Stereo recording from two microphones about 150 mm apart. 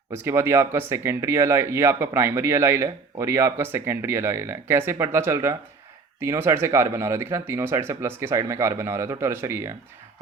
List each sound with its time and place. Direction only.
0.1 s speech: 15° right (ahead or behind)